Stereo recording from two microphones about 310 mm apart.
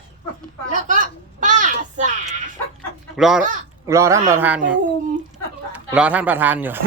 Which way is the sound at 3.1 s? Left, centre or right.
Centre.